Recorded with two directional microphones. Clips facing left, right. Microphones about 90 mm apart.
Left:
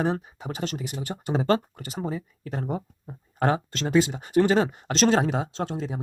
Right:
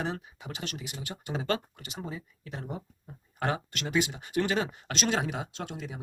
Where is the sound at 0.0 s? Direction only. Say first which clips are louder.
Left 8 dB; 30° left (ahead or behind).